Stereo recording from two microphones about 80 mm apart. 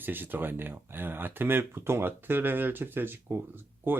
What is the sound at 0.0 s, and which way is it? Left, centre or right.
Speech, right.